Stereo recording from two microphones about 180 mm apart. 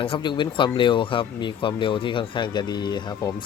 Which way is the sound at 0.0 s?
25° left (ahead or behind).